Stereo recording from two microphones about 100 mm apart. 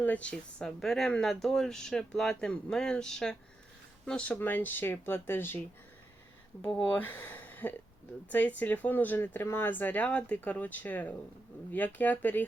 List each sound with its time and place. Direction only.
0.0 s speech: 15° left (ahead or behind)
6.9 s speech: 15° left (ahead or behind)